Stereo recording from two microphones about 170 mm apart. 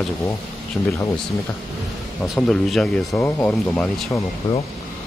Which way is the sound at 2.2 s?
Centre (ahead or behind).